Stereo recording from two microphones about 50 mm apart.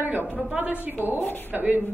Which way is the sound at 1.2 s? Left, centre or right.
Left.